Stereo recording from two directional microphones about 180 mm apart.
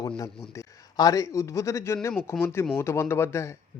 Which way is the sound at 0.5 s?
20° left (ahead or behind).